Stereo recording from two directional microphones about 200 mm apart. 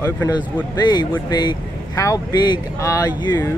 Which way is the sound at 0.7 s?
20° left (ahead or behind).